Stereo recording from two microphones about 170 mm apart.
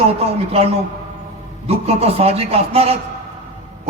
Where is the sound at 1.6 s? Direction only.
35° right (ahead or behind).